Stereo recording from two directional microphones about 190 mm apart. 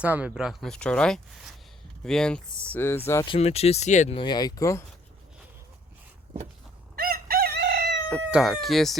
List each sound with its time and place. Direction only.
0.0 s speech: 5° right (ahead or behind); by 3.0 s 10° left (ahead or behind)
3.2 s speech: 30° left (ahead or behind)
4.2 s speech: 20° left (ahead or behind)
6.9 s crowing: 50° right (ahead or behind)
8.3 s speech: centre (ahead or behind)